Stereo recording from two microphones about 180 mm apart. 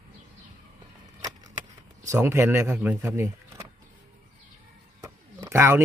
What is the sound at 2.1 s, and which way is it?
Speech, 15° right (ahead or behind).